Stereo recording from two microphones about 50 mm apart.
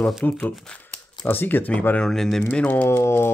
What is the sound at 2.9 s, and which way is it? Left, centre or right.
Speech, left.